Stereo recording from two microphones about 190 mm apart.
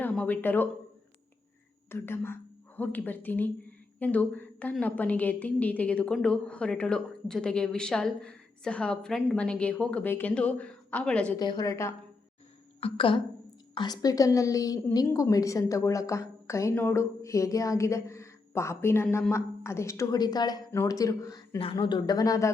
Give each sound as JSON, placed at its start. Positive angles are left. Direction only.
{"t": 0.0, "sound": "speech", "side_deg": 10}
{"t": 1.9, "sound": "a woman's voice", "side_deg": 10}
{"t": 11.3, "sound": "a woman's voice", "side_deg": 20}
{"t": 12.8, "sound": "a woman's voice", "side_deg": 30}